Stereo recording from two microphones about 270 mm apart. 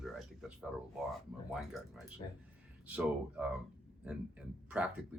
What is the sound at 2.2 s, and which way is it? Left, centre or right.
Speech, centre.